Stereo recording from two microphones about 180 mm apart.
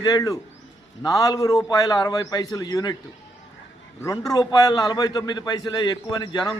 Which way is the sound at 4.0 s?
20° left (ahead or behind).